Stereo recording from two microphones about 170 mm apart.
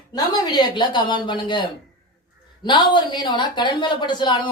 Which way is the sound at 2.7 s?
25° left (ahead or behind).